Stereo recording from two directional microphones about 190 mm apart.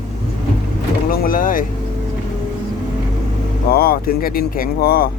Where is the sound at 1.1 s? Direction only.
50° left (ahead or behind).